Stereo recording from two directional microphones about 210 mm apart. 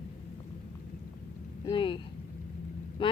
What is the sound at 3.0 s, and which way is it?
Vehicle, 25° left (ahead or behind).